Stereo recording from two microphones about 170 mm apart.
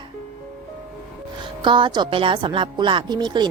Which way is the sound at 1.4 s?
25° right (ahead or behind).